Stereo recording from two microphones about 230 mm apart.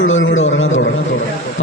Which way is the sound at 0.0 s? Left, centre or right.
Left.